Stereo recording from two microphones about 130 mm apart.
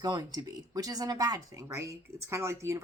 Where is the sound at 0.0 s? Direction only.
30° right (ahead or behind).